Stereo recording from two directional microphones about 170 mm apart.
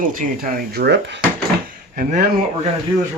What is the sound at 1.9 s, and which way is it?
Speech, 55° right (ahead or behind).